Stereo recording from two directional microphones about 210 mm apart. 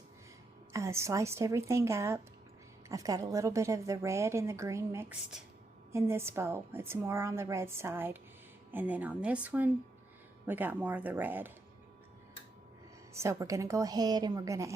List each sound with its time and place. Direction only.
0.7 s a woman's voice: 15° right (ahead or behind)
13.1 s a woman's voice: 15° right (ahead or behind)